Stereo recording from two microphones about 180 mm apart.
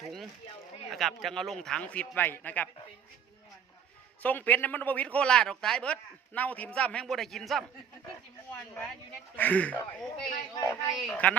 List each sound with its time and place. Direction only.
0.9 s a man's voice: centre (ahead or behind)
4.2 s a man's voice: 10° left (ahead or behind)
9.3 s a man's voice: 10° left (ahead or behind)
10.5 s speech: 20° left (ahead or behind)
11.0 s a man's voice: 5° left (ahead or behind)